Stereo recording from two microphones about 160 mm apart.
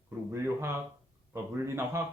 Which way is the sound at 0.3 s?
15° right (ahead or behind).